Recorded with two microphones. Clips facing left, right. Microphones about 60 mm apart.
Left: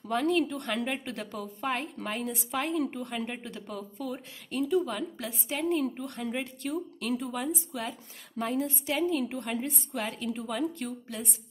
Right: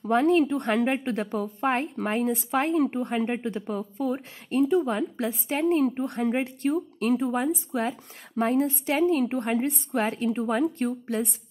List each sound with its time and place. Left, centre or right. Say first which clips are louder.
0.0 s a woman's voice: right 6 dB; right